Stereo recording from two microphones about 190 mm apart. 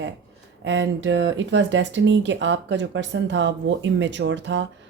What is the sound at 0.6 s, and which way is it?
Speech, 75° right (ahead or behind).